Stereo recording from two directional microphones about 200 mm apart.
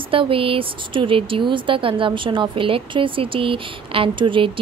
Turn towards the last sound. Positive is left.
turn(degrees=-25)  # may be behind; listen again after turning